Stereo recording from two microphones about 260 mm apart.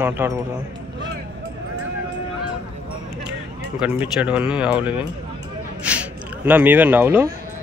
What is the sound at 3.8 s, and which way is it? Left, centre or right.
Speech, centre.